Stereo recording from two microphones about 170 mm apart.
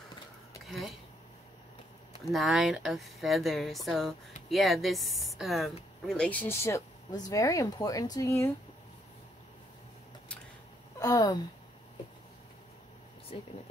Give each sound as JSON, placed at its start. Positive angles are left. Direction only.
{"t": 0.7, "sound": "speech", "side_deg": 0}
{"t": 2.2, "sound": "speech", "side_deg": 0}
{"t": 11.0, "sound": "speech", "side_deg": 20}
{"t": 13.3, "sound": "speech", "side_deg": 30}